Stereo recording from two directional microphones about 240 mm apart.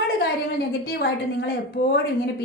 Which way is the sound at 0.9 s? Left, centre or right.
Left.